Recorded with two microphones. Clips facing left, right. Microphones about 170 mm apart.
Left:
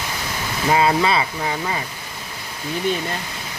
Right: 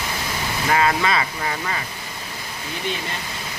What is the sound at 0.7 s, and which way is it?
Speech, 15° left (ahead or behind).